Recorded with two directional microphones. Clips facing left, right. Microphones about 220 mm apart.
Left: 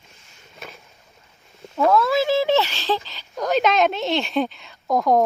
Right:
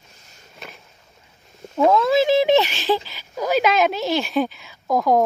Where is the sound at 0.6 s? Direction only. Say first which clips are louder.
Left 1 dB; centre (ahead or behind).